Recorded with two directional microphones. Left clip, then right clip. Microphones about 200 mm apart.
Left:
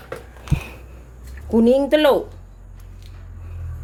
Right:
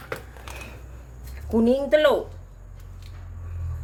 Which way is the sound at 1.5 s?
45° left (ahead or behind).